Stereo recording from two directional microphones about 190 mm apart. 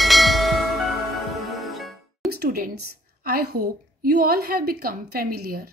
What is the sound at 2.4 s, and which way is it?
A woman's voice, 55° right (ahead or behind).